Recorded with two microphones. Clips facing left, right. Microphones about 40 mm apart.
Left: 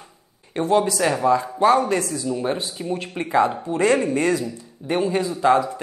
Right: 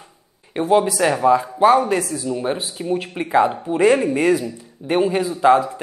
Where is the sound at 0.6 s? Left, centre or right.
Centre.